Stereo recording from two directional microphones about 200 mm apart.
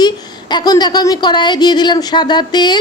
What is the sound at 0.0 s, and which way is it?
A woman's voice, 20° left (ahead or behind).